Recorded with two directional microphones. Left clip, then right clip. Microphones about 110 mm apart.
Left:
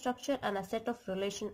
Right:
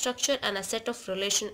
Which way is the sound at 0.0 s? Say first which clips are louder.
Right 6 dB; 25° left (ahead or behind).